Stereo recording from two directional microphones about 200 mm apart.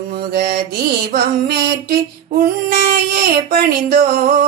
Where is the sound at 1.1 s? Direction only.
50° right (ahead or behind).